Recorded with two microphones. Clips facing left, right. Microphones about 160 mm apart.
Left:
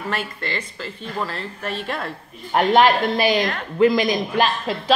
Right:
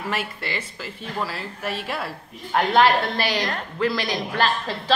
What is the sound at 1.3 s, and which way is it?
Speech, 10° right (ahead or behind).